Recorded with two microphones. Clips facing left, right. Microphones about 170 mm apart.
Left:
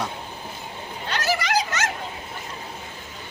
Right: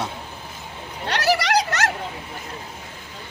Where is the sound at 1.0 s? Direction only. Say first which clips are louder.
Right 4 dB; 70° right (ahead or behind).